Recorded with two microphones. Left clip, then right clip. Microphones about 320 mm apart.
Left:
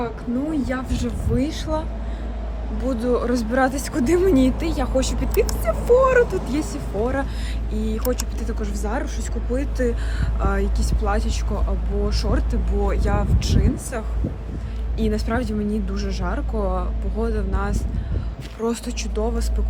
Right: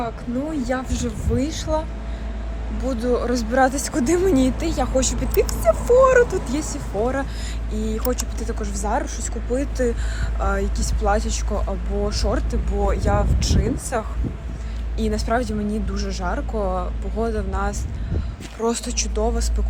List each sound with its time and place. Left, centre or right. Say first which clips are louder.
0.6 s speech: right 1 dB; centre
2.8 s speech: even; centre